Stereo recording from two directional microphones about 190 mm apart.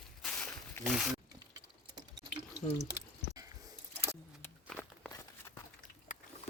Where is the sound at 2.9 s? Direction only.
20° right (ahead or behind).